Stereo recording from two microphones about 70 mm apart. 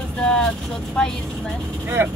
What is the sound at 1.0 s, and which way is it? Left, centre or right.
Speech, centre.